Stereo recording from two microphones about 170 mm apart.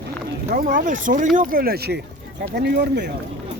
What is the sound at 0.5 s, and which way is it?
Speech, 60° right (ahead or behind).